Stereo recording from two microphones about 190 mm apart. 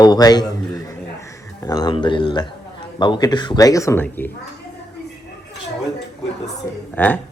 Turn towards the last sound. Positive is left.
turn(degrees=10)  # may be behind; listen again after turning